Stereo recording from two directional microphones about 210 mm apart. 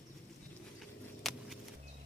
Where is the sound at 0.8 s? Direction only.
Centre (ahead or behind).